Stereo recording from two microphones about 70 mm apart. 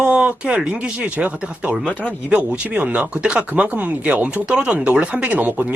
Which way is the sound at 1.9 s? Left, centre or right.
Centre.